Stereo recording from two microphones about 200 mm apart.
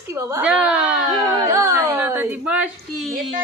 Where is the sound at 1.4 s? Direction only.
15° right (ahead or behind).